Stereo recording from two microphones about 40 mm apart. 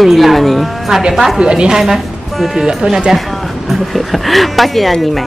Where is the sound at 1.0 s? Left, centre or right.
Centre.